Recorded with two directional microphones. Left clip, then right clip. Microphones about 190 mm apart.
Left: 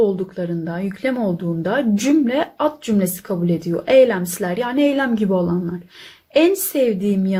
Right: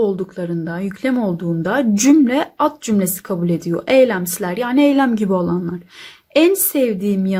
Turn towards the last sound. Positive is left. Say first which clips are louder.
# even
turn(degrees=-20)  # may be behind; listen again after turning